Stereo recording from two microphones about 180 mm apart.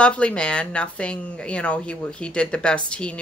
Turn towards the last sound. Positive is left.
turn(degrees=5)  # may be behind; listen again after turning